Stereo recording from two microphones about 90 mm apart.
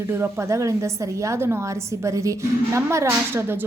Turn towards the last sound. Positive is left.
turn(degrees=-25)  # may be behind; listen again after turning